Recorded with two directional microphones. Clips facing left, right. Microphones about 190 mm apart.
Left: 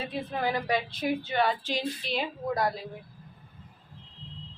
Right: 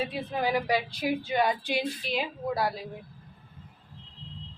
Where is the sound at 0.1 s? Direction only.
10° right (ahead or behind).